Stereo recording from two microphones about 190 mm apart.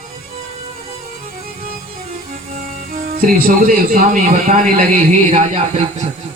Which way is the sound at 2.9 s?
50° right (ahead or behind).